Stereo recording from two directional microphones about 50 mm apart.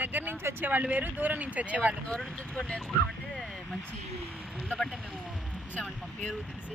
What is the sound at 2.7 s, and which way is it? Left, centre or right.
Music, centre.